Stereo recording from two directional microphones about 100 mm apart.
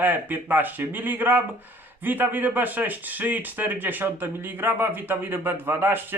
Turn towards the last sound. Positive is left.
turn(degrees=-20)  # may be behind; listen again after turning